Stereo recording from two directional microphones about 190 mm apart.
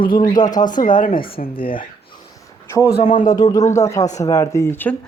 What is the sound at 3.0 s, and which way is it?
Speech, 40° left (ahead or behind).